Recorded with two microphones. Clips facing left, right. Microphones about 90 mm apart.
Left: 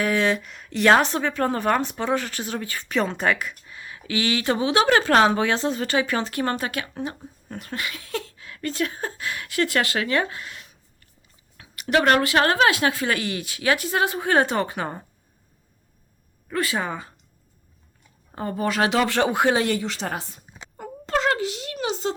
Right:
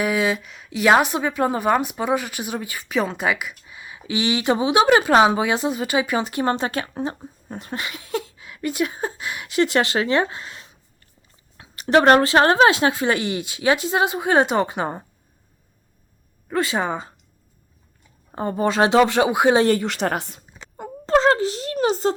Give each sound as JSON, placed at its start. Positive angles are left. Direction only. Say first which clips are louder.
{"t": 0.0, "sound": "speech", "louder": "right 1 dB", "side_deg": -5}
{"t": 16.5, "sound": "speech", "louder": "right 3 dB", "side_deg": -25}
{"t": 18.3, "sound": "speech", "louder": "right 4 dB", "side_deg": -25}
{"t": 19.5, "sound": "speech", "louder": "right 6 dB", "side_deg": -35}
{"t": 19.8, "sound": "a woman's voice", "louder": "right 6 dB", "side_deg": -60}
{"t": 21.2, "sound": "speech", "louder": "right 5 dB", "side_deg": -30}